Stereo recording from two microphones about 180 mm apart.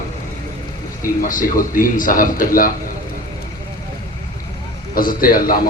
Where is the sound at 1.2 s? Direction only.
50° left (ahead or behind).